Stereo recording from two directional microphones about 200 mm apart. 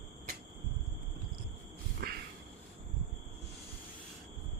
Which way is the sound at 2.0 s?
50° right (ahead or behind).